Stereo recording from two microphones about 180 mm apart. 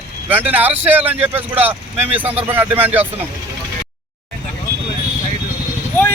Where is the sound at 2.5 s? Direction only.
10° right (ahead or behind).